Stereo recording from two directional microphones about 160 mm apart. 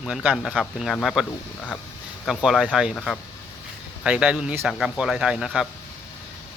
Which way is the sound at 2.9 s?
5° left (ahead or behind).